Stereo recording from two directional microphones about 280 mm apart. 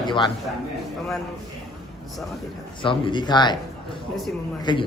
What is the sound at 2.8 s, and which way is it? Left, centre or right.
Speech, centre.